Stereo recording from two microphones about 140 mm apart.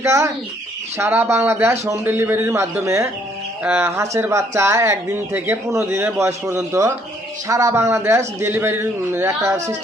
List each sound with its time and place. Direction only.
0.0 s a man's voice: 20° right (ahead or behind)